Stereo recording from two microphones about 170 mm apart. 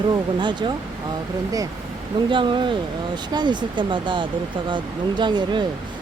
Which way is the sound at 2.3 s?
30° right (ahead or behind).